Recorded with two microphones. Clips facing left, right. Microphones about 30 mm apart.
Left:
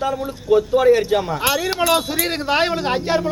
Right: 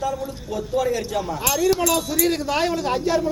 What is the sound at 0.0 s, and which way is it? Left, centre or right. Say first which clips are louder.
Speech: left 3 dB; left.